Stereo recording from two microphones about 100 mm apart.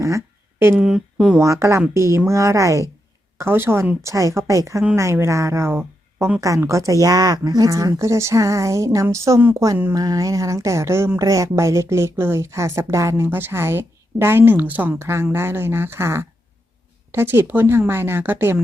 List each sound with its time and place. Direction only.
0.6 s a woman's voice: 25° right (ahead or behind)
0.9 s speech: 5° right (ahead or behind)
1.4 s a woman's voice: 30° right (ahead or behind)